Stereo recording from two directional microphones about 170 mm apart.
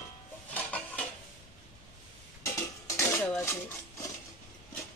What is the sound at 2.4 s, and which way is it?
Dishes, 15° left (ahead or behind).